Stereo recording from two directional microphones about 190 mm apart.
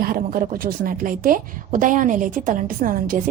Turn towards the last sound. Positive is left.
turn(degrees=-45)  # may be behind; listen again after turning